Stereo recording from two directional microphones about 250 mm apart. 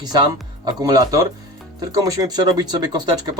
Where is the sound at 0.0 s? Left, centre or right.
Centre.